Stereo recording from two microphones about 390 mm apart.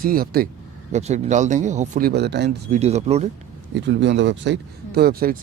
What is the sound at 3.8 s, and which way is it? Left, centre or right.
Speech, right.